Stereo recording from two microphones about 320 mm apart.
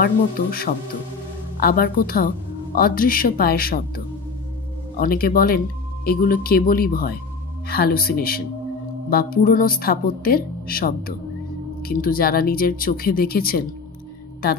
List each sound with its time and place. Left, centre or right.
0.0 s a woman's voice: left